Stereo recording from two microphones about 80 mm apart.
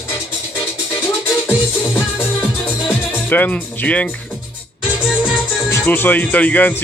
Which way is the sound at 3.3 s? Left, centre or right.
Centre.